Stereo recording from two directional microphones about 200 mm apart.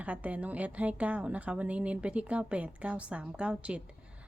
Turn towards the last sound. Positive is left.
turn(degrees=-5)  # may be behind; listen again after turning